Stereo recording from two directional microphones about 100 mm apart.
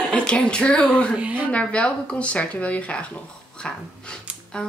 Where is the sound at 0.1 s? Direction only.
10° left (ahead or behind).